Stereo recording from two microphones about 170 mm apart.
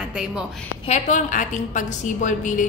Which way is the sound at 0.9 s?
45° left (ahead or behind).